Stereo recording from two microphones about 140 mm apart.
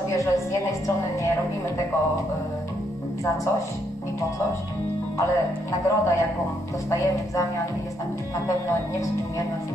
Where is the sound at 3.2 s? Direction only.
20° left (ahead or behind).